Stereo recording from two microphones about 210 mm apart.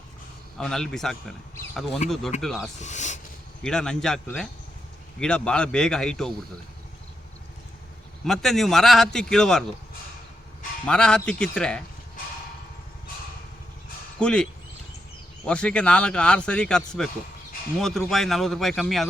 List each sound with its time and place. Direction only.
0.6 s speech: 5° left (ahead or behind)
2.0 s speech: 35° left (ahead or behind)
2.4 s speech: centre (ahead or behind)
2.8 s speech: 35° left (ahead or behind)
3.6 s speech: 5° left (ahead or behind)
8.2 s speech: centre (ahead or behind)
10.8 s speech: 5° left (ahead or behind)
14.2 s speech: 5° left (ahead or behind)
15.4 s speech: 5° left (ahead or behind)